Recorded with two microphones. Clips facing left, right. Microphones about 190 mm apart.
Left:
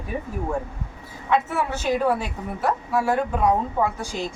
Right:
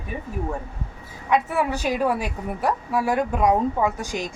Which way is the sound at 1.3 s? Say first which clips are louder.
Right 1 dB; 15° right (ahead or behind).